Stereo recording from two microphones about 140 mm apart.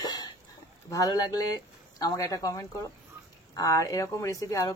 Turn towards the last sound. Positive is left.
turn(degrees=25)  # may be behind; listen again after turning